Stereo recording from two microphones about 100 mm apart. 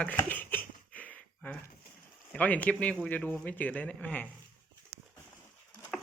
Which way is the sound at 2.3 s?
15° left (ahead or behind).